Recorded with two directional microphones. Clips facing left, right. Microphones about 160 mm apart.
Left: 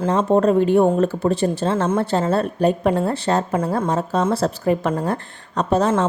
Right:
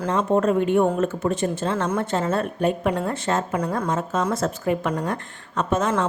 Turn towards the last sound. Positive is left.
turn(degrees=30)  # may be behind; listen again after turning